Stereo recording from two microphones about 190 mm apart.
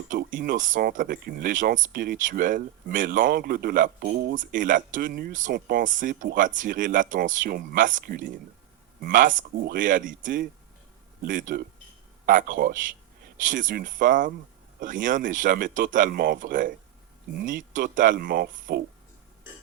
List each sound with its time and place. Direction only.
0.1 s speech: 45° right (ahead or behind)